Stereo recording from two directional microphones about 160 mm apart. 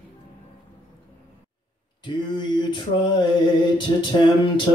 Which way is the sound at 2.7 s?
30° left (ahead or behind).